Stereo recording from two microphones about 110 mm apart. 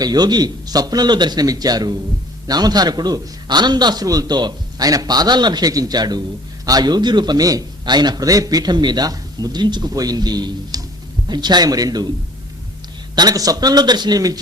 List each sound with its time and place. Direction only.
0.0 s a man's voice: 35° right (ahead or behind)
13.1 s a man's voice: 35° right (ahead or behind)